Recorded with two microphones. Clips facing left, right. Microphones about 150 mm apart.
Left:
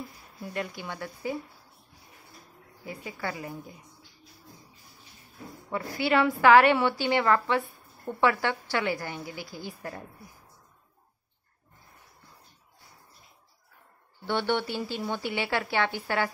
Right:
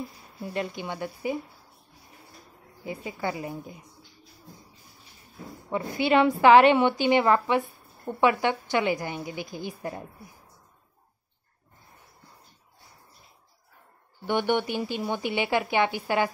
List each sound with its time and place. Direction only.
0.4 s a woman's voice: 25° right (ahead or behind)
2.8 s a woman's voice: 20° right (ahead or behind)
5.7 s a woman's voice: 20° right (ahead or behind)
14.2 s speech: 15° right (ahead or behind)